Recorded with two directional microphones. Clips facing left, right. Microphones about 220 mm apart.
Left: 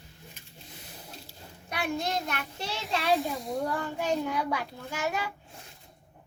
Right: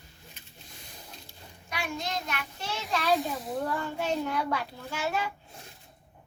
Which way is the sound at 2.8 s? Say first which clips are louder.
Even; centre (ahead or behind).